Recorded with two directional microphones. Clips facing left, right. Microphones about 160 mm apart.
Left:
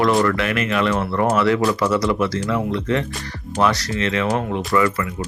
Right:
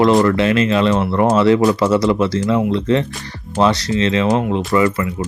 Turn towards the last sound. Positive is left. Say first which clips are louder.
# right 3 dB
turn(degrees=-25)  # may be behind; listen again after turning